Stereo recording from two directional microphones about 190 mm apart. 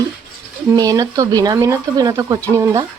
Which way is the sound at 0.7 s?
20° right (ahead or behind).